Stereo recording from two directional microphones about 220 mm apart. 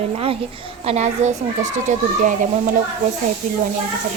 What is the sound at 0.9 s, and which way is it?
A woman's voice, 30° right (ahead or behind).